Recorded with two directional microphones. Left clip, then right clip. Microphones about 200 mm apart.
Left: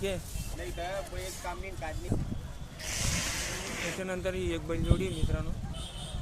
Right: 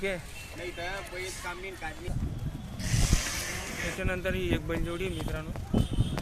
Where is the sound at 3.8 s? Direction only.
5° left (ahead or behind).